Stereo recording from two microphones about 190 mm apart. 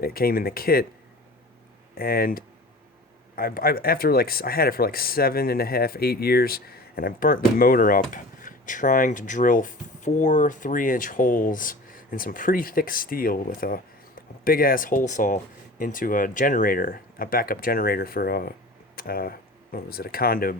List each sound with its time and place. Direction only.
0.0 s speech: 50° left (ahead or behind)
2.0 s speech: 50° left (ahead or behind)